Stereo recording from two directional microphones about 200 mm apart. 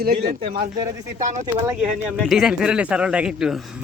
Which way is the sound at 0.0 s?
50° right (ahead or behind).